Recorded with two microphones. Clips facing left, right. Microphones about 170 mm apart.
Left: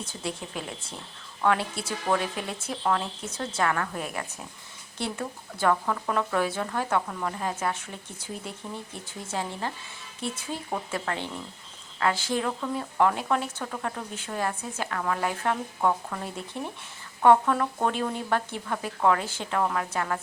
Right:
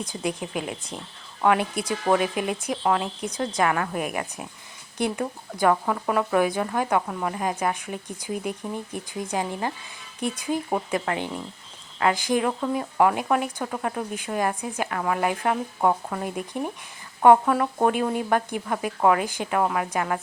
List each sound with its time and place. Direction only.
0.0 s speech: 15° right (ahead or behind)
15.9 s speech: 25° right (ahead or behind)
16.2 s speech: 15° right (ahead or behind)